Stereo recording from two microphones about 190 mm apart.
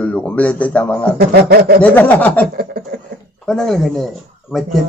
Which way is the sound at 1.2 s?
60° right (ahead or behind).